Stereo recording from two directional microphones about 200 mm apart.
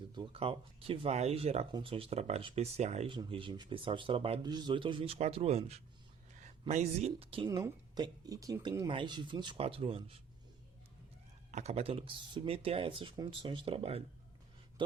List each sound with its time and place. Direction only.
0.1 s speech: 25° right (ahead or behind)
11.5 s speech: 30° right (ahead or behind)